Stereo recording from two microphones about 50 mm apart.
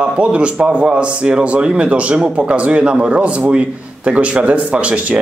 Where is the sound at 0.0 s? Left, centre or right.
Right.